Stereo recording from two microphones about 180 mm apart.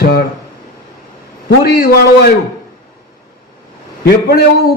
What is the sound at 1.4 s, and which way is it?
Speech, 60° left (ahead or behind).